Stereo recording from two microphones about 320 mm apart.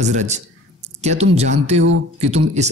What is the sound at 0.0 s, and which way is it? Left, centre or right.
Speech, right.